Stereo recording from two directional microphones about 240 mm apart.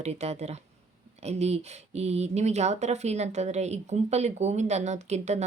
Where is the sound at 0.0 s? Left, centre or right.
Right.